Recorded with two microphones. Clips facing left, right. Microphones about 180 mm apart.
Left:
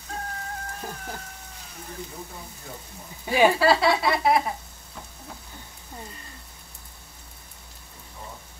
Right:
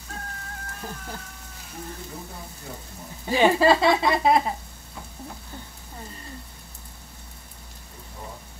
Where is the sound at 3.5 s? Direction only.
20° right (ahead or behind).